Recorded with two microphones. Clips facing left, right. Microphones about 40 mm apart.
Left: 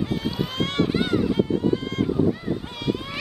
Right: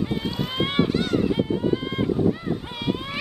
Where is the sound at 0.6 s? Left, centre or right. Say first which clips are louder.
Right 2 dB; centre.